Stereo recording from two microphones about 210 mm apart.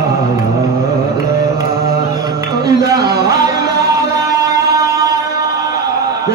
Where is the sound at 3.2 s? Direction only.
15° right (ahead or behind).